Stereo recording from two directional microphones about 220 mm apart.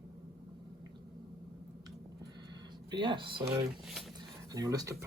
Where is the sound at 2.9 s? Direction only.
20° right (ahead or behind).